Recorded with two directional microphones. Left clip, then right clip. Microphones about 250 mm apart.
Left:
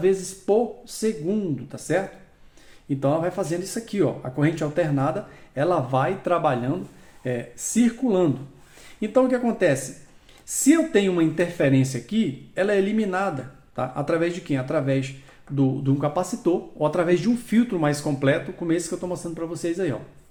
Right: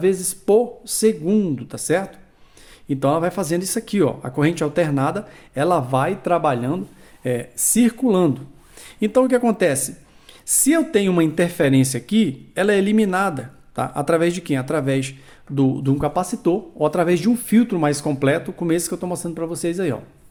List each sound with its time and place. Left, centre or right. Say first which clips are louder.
0.0 s speech: right 2 dB; right